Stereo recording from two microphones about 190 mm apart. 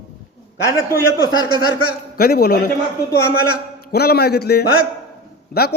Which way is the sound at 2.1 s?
55° left (ahead or behind).